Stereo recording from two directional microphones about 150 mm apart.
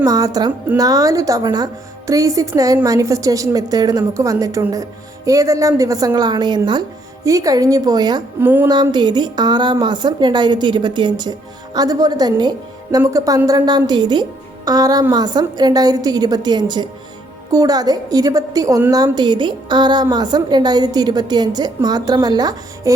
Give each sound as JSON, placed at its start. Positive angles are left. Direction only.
{"t": 0.0, "sound": "a woman's voice", "side_deg": -25}
{"t": 8.4, "sound": "speech", "side_deg": -15}
{"t": 8.6, "sound": "a woman's voice", "side_deg": -30}